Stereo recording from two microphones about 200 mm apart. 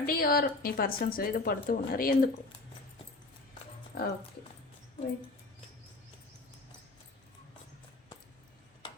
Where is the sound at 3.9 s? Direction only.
50° left (ahead or behind).